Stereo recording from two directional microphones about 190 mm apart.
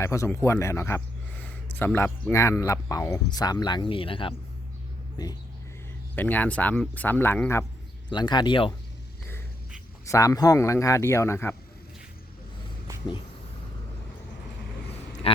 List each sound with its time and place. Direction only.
0.0 s speech: 15° left (ahead or behind)
6.1 s speech: 10° left (ahead or behind)
8.1 s speech: 20° left (ahead or behind)
10.1 s speech: 20° left (ahead or behind)